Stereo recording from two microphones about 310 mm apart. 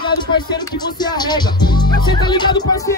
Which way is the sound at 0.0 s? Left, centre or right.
Centre.